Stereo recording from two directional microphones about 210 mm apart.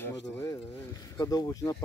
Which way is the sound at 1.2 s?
15° left (ahead or behind).